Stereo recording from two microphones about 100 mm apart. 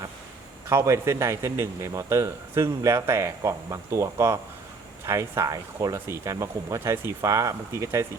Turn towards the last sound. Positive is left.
turn(degrees=-30)  # may be behind; listen again after turning